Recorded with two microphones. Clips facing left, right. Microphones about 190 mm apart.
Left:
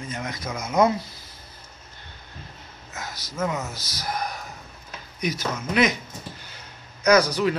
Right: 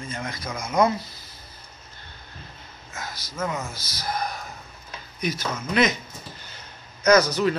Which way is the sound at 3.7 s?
15° left (ahead or behind).